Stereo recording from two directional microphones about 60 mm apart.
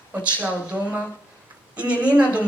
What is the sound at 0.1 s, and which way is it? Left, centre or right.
A woman's voice, right.